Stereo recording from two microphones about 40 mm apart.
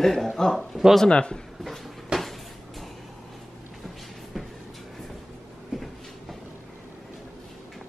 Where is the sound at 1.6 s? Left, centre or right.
Centre.